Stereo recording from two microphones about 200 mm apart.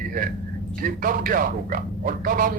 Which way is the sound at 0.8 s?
45° right (ahead or behind).